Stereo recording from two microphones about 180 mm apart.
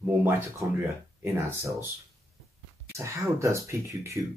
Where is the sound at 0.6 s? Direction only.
15° right (ahead or behind).